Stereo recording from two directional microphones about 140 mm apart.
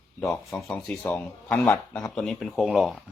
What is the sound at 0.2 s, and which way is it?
Speech, 5° left (ahead or behind).